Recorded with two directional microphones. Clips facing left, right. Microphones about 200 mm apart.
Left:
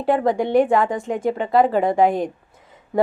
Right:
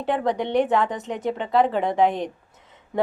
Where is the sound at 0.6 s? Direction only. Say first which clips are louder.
Left 4 dB; 45° left (ahead or behind).